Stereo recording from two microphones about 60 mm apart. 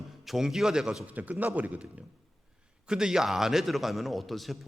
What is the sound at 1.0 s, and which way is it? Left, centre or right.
A man's voice, right.